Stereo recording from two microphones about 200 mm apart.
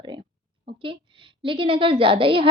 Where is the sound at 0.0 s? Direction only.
25° right (ahead or behind).